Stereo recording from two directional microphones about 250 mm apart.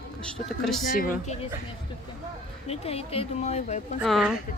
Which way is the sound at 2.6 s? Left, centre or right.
Left.